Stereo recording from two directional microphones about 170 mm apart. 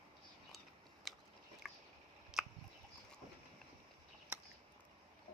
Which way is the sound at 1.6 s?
Centre (ahead or behind).